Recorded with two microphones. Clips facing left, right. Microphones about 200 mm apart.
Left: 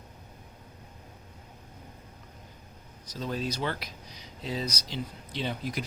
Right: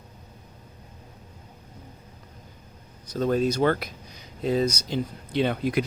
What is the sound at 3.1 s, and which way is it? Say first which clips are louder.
Speech: right 10 dB; 55° right (ahead or behind).